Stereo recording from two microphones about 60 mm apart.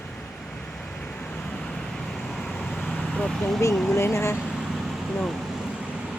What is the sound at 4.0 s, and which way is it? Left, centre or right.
Speech, left.